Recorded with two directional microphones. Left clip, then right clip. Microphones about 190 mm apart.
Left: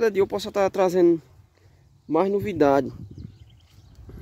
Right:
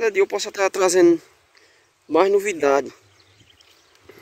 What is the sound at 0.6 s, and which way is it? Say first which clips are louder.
Speech: right 3 dB; 10° left (ahead or behind).